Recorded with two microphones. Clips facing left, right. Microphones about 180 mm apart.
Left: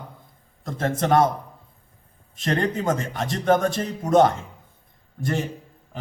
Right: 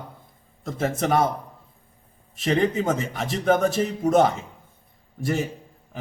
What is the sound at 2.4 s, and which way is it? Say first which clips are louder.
A man's voice: right 2 dB; 5° right (ahead or behind).